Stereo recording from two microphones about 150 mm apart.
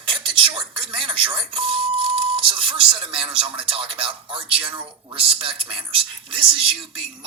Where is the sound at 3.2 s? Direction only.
35° right (ahead or behind).